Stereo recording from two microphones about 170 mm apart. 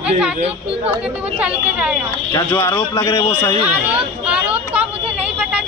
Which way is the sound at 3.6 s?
5° right (ahead or behind).